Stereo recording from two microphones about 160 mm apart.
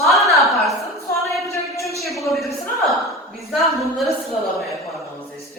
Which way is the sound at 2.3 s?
Centre (ahead or behind).